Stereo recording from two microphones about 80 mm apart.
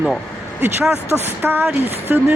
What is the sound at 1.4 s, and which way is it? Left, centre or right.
Speech, right.